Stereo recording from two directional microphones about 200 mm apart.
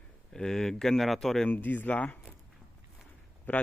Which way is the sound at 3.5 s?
10° left (ahead or behind).